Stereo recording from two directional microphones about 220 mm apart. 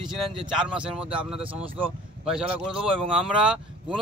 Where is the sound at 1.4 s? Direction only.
25° right (ahead or behind).